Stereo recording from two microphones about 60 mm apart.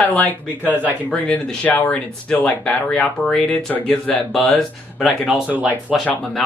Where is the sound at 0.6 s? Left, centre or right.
Right.